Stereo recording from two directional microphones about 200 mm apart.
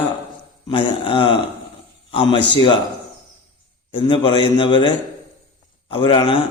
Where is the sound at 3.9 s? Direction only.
25° left (ahead or behind).